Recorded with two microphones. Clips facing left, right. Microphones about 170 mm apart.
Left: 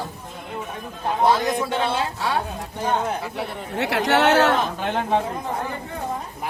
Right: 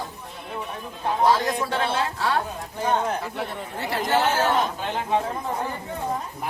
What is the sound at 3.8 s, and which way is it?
Speech, 70° left (ahead or behind).